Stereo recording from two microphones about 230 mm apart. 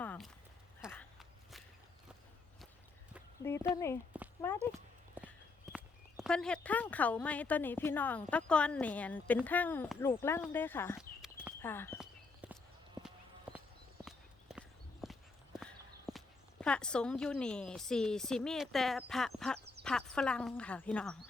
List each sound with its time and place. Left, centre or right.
0.0 s a sound: centre
3.4 s speech: centre
5.2 s walk: centre
5.7 s speech: centre
11.2 s horse: centre
11.6 s speech: centre
11.9 s walk: centre
14.0 s walk: centre
15.5 s speech: centre
19.5 s a sound: right
19.8 s speech: centre